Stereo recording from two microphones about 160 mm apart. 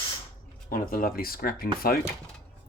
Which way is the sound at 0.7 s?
60° left (ahead or behind).